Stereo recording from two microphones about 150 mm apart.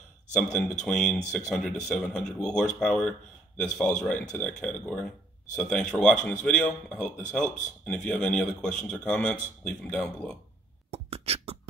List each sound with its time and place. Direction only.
0.3 s speech: 5° left (ahead or behind)
10.9 s beatboxing: 40° right (ahead or behind)